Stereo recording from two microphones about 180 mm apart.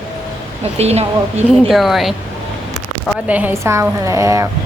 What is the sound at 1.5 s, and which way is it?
Speech, centre (ahead or behind).